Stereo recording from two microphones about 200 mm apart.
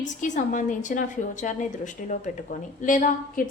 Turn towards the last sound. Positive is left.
turn(degrees=40)  # may be behind; listen again after turning